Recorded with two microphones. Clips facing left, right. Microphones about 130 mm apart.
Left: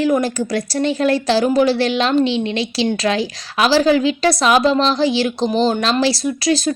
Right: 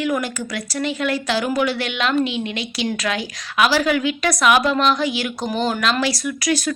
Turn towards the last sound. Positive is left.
turn(degrees=30)  # may be behind; listen again after turning